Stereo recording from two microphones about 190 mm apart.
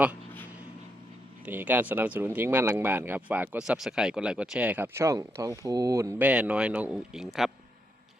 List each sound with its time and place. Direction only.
1.5 s speech: 10° right (ahead or behind)